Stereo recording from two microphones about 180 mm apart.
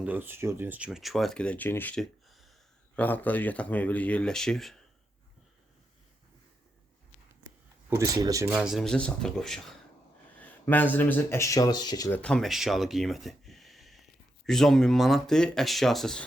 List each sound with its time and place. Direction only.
0.0 s speech: 10° right (ahead or behind)
7.4 s speech: 15° right (ahead or behind); by 9.7 s 5° left (ahead or behind)
10.4 s a sound: 10° left (ahead or behind)
10.9 s speech: 10° left (ahead or behind)
12.2 s speech: 5° left (ahead or behind)